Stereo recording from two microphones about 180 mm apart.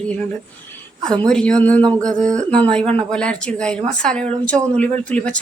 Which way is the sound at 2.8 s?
30° right (ahead or behind).